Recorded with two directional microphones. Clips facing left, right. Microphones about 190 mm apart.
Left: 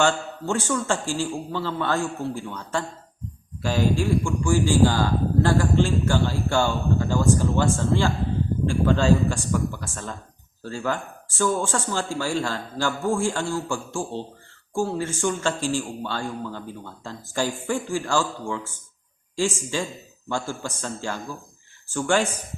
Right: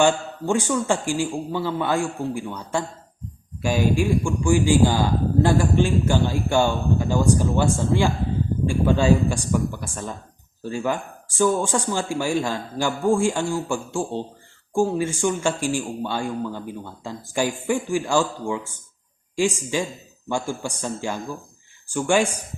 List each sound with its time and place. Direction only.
0.0 s a man's voice: 15° right (ahead or behind)